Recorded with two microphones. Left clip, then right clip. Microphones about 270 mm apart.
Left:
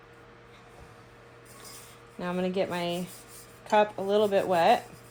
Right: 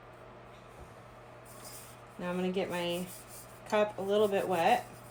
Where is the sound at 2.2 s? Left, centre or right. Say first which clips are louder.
Left 5 dB; left.